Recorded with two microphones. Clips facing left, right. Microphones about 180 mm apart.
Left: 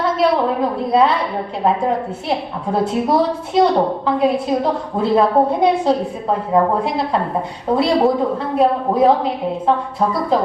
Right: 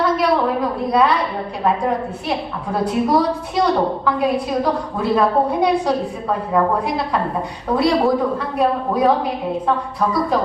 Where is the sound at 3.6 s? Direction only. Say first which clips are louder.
Left 4 dB; 25° left (ahead or behind).